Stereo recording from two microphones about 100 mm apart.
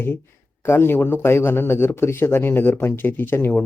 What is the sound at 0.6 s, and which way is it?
Speech, 25° left (ahead or behind).